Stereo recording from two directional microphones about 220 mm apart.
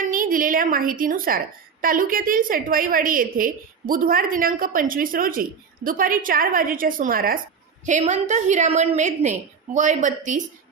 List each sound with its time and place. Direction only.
0.0 s a woman's voice: 40° right (ahead or behind)